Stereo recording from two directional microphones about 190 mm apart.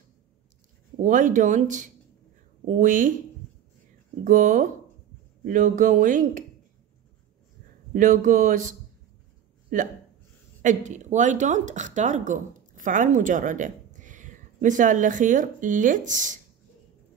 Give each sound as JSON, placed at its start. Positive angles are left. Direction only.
{"t": 1.0, "sound": "speech", "side_deg": -40}
{"t": 4.2, "sound": "speech", "side_deg": -45}
{"t": 7.9, "sound": "speech", "side_deg": -45}